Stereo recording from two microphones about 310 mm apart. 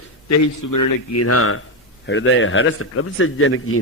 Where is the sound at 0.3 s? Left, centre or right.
Left.